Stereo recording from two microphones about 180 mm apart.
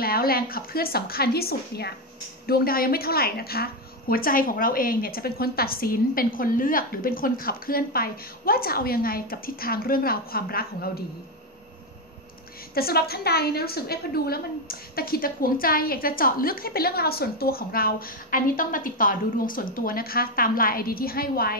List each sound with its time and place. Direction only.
0.0 s a woman's voice: 55° left (ahead or behind)
12.7 s a woman's voice: 60° left (ahead or behind)